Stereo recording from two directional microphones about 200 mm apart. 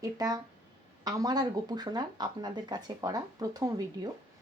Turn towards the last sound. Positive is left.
turn(degrees=-20)  # may be behind; listen again after turning